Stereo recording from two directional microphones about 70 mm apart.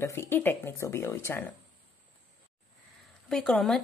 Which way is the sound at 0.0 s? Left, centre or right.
Left.